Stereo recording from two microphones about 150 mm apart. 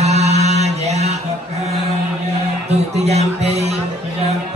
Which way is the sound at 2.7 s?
45° right (ahead or behind).